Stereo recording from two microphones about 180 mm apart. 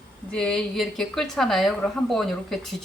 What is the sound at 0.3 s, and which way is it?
A woman's voice, 5° left (ahead or behind).